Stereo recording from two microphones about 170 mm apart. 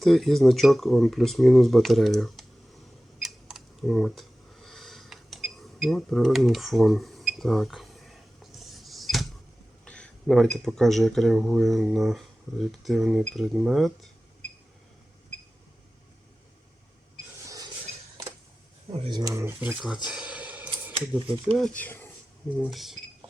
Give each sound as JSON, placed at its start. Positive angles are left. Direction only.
{"t": 0.0, "sound": "speech", "side_deg": 0}
{"t": 3.2, "sound": "camera", "side_deg": 0}
{"t": 8.5, "sound": "dishes", "side_deg": 0}
{"t": 9.8, "sound": "speech", "side_deg": 5}
{"t": 17.4, "sound": "a sound", "side_deg": -20}
{"t": 18.9, "sound": "speech", "side_deg": -30}
{"t": 20.1, "sound": "a sound", "side_deg": -5}
{"t": 21.1, "sound": "speech", "side_deg": -10}
{"t": 21.6, "sound": "speech", "side_deg": 10}